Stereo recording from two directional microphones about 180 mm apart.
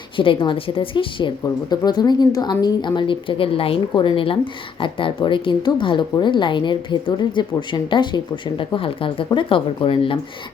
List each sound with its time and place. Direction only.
0.2 s speech: 30° left (ahead or behind)